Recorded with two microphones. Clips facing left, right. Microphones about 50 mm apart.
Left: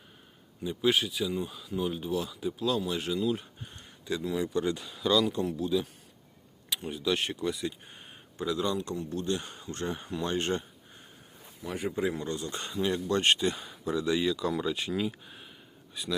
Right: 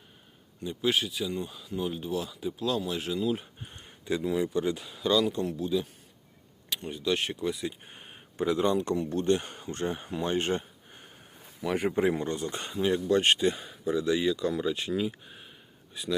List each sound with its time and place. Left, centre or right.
0.6 s speech: centre
7.9 s a sound: right
8.9 s speech: right
9.7 s speech: centre
11.9 s speech: right
12.9 s speech: centre